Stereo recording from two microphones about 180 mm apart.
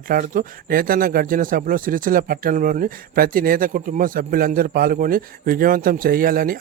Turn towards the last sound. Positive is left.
turn(degrees=-55)  # may be behind; listen again after turning